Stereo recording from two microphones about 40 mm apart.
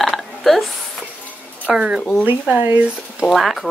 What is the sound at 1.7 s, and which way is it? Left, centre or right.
Speech, right.